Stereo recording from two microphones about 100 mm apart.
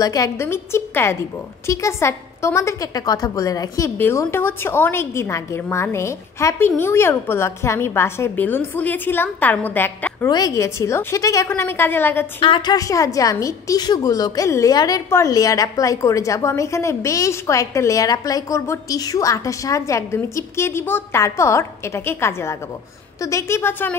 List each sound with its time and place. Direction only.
0.0 s a woman's voice: 35° left (ahead or behind)
0.5 s a woman's voice: 25° left (ahead or behind)
4.3 s a woman's voice: 20° left (ahead or behind)
10.2 s a woman's voice: 35° left (ahead or behind); by 12.3 s 20° left (ahead or behind)
12.4 s a woman's voice: 55° left (ahead or behind)
12.7 s a woman's voice: 35° left (ahead or behind)